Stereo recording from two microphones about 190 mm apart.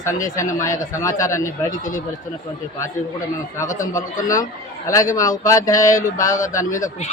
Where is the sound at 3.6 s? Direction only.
15° left (ahead or behind).